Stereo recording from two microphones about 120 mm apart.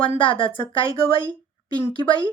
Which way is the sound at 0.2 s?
45° left (ahead or behind).